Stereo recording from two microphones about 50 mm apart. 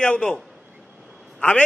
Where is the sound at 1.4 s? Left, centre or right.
Left.